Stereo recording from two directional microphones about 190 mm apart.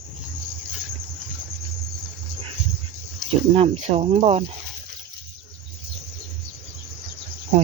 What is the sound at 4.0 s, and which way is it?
Speech, 30° right (ahead or behind).